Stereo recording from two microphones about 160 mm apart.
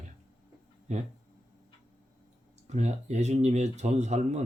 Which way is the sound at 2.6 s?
45° right (ahead or behind).